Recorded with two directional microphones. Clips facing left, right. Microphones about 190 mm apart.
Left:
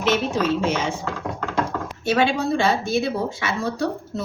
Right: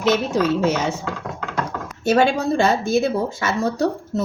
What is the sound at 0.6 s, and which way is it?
Speech, 40° right (ahead or behind).